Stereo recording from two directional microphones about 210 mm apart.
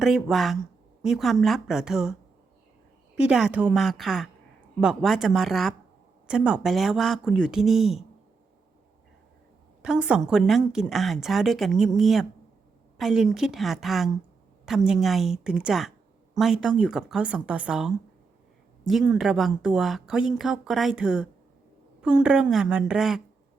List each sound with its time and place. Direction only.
0.0 s speech: centre (ahead or behind)
3.2 s speech: 5° right (ahead or behind)
9.8 s speech: 5° right (ahead or behind)
19.1 s speech: centre (ahead or behind)